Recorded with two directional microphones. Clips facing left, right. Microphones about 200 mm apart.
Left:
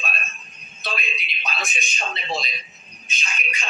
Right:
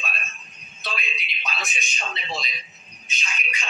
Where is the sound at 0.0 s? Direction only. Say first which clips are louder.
Left 3 dB; 50° left (ahead or behind).